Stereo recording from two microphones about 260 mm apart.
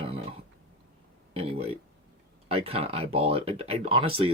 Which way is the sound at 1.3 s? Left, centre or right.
Right.